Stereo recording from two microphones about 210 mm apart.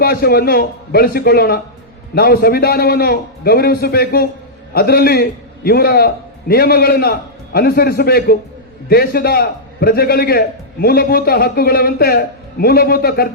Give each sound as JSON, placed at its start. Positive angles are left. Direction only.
{"t": 0.0, "sound": "a man's voice", "side_deg": 50}